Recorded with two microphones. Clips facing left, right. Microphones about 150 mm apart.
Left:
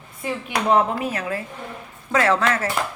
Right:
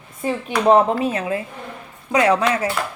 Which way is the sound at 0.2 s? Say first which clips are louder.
Right 4 dB; 35° right (ahead or behind).